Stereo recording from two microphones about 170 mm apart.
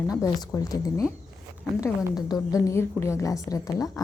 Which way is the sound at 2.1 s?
25° left (ahead or behind).